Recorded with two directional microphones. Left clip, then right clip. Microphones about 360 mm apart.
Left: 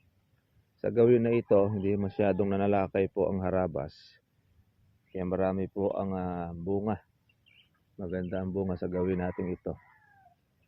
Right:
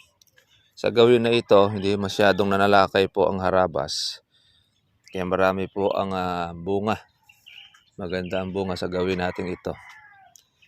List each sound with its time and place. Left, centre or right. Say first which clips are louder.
0.8 s speech: right 7 dB; centre
9.3 s speech: right 5 dB; right